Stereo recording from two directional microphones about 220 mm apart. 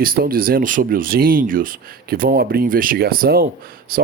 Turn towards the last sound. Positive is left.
turn(degrees=-40)  # may be behind; listen again after turning